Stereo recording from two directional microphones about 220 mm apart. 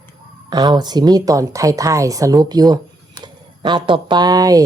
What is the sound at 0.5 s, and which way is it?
Speech, 20° right (ahead or behind).